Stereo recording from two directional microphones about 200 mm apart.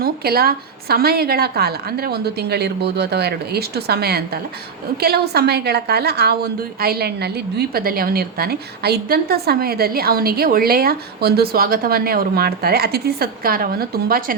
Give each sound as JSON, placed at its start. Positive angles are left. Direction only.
{"t": 0.0, "sound": "a woman's voice", "side_deg": -50}